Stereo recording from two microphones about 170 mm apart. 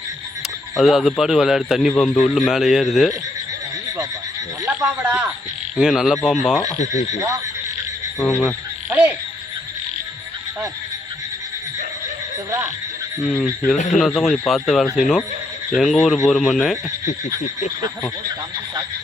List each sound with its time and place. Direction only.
0.8 s a man's voice: centre (ahead or behind)
4.9 s a man's voice: 10° right (ahead or behind)
6.7 s frog: 45° left (ahead or behind)
8.2 s a man's voice: centre (ahead or behind)
12.5 s speech: 15° right (ahead or behind)
13.2 s a man's voice: 5° left (ahead or behind)
13.7 s frog: 45° left (ahead or behind)
14.0 s a man's voice: centre (ahead or behind)